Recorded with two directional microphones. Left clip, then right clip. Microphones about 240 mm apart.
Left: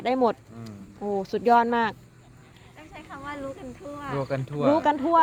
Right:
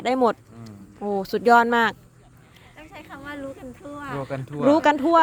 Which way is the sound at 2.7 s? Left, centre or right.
Right.